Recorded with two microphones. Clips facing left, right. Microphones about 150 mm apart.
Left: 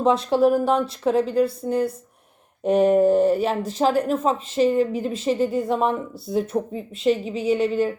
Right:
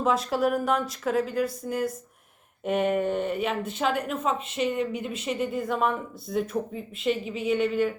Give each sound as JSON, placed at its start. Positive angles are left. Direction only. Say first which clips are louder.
{"t": 0.0, "sound": "a woman's voice", "louder": "left 6 dB", "side_deg": 30}